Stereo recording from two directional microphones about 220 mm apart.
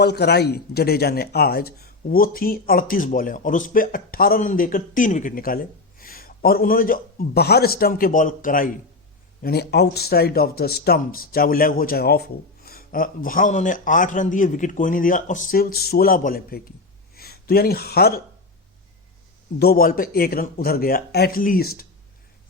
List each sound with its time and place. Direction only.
0.0 s a man's voice: 50° left (ahead or behind)
19.5 s speech: 45° left (ahead or behind)